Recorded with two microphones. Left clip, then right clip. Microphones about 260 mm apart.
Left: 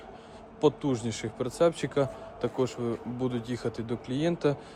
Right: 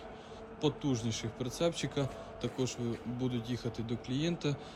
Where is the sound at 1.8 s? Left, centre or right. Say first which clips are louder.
Left 7 dB; left.